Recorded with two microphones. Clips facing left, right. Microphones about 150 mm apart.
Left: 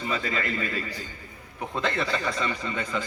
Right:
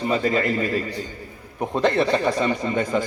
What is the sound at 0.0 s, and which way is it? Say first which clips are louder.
Speech: right 8 dB; 40° right (ahead or behind).